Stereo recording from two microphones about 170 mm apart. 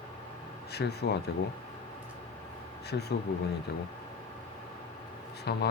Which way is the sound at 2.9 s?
75° left (ahead or behind).